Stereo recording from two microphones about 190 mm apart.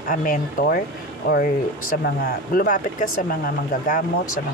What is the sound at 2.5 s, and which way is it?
Speech, 45° left (ahead or behind).